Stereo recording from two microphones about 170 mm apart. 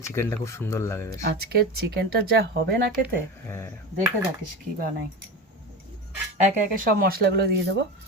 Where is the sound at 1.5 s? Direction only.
70° right (ahead or behind).